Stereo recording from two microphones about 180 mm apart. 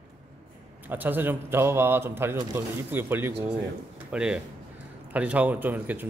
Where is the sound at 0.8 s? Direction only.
10° right (ahead or behind).